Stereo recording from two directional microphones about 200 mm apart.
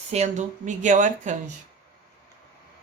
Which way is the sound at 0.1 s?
35° right (ahead or behind).